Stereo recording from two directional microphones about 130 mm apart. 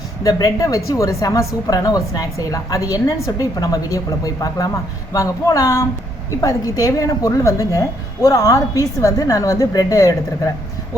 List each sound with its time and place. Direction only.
0.2 s a woman's voice: 25° left (ahead or behind)